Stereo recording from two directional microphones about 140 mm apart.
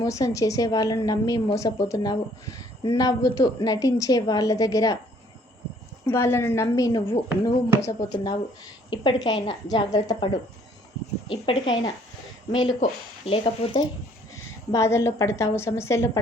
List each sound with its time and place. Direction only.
0.0 s a woman's voice: 25° left (ahead or behind)
6.1 s a woman's voice: 20° left (ahead or behind)
11.3 s a woman's voice: 40° left (ahead or behind)
13.2 s speech: 45° left (ahead or behind)
14.3 s a woman's voice: 20° left (ahead or behind)